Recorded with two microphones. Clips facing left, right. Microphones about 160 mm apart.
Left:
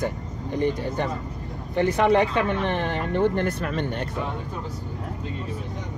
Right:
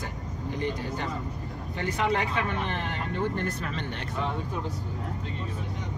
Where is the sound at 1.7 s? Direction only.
60° left (ahead or behind).